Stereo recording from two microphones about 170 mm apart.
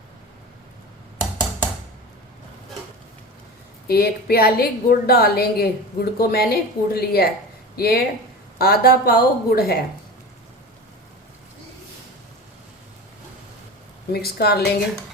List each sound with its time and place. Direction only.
3.8 s a woman's voice: 65° left (ahead or behind)
14.1 s a woman's voice: 65° left (ahead or behind)